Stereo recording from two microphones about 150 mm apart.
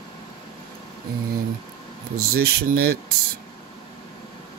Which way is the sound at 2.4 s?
90° right.